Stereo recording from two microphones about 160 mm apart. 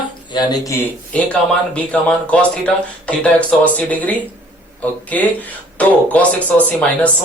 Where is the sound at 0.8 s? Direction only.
10° left (ahead or behind).